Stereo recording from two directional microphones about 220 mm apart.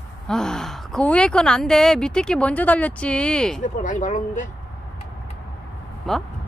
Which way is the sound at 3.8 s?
35° left (ahead or behind).